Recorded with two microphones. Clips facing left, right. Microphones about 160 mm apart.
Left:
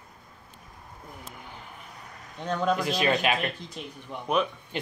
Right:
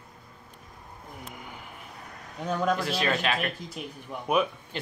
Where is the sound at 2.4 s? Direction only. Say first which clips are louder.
Even; 5° right (ahead or behind).